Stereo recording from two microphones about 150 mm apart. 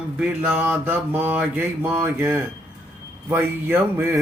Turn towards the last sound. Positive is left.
turn(degrees=-15)  # may be behind; listen again after turning